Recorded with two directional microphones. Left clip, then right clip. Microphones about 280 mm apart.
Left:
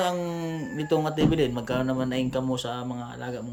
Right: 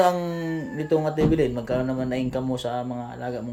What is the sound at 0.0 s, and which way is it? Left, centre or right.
Speech, centre.